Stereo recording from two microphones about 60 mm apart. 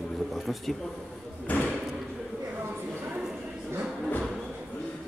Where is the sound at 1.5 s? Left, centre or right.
Left.